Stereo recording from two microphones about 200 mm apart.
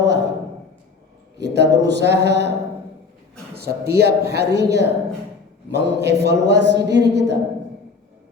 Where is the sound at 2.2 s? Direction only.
55° right (ahead or behind).